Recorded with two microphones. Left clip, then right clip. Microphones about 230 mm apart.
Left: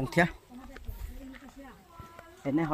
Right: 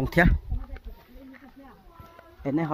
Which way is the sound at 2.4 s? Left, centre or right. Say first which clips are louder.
Right 2 dB; right.